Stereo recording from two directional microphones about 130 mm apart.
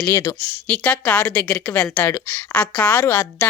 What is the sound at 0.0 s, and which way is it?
A woman's voice, 20° left (ahead or behind).